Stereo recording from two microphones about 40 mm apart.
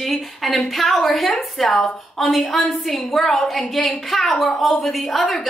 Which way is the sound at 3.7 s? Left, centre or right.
Centre.